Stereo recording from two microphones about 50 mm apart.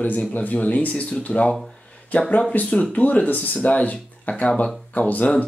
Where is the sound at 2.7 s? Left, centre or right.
Left.